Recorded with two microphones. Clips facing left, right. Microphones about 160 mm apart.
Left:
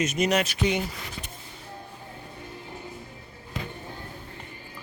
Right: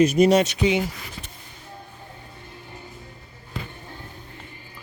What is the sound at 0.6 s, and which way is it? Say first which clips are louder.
Speech: right 5 dB; 5° right (ahead or behind).